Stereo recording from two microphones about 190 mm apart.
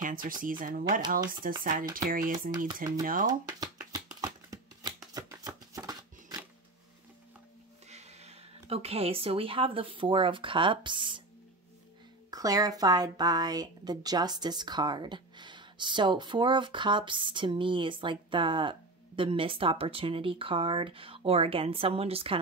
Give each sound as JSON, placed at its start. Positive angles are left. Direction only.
{"t": 0.0, "sound": "speech", "side_deg": -45}
{"t": 3.4, "sound": "shuffling cards", "side_deg": -20}
{"t": 4.2, "sound": "a sound", "side_deg": -20}
{"t": 7.9, "sound": "speech", "side_deg": -35}
{"t": 12.3, "sound": "speech", "side_deg": -20}